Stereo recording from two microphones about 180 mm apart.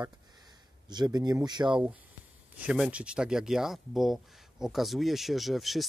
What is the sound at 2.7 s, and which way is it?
Speech, 5° right (ahead or behind).